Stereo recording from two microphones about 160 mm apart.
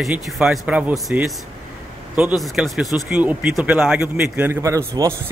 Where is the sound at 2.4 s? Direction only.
Centre (ahead or behind).